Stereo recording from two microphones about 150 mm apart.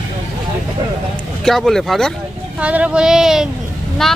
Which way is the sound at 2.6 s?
10° right (ahead or behind).